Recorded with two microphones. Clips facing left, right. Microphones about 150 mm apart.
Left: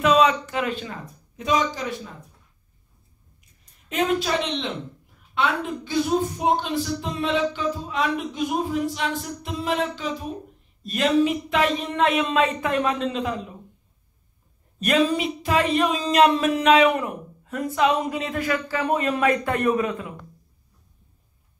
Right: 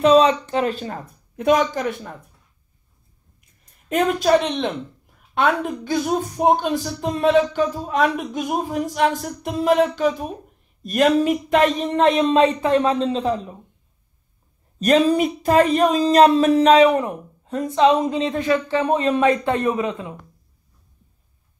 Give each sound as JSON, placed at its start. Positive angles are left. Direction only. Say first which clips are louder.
{"t": 0.0, "sound": "a man's voice", "louder": "right 4 dB", "side_deg": -30}
{"t": 1.3, "sound": "speech", "louder": "right 6 dB", "side_deg": -60}
{"t": 3.9, "sound": "speech", "louder": "right 6 dB", "side_deg": -50}
{"t": 11.9, "sound": "speech", "louder": "right 5 dB", "side_deg": -30}
{"t": 14.8, "sound": "speech", "louder": "right 5 dB", "side_deg": -40}